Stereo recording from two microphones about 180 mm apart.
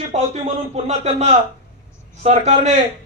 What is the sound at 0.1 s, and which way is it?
Speech, 35° right (ahead or behind).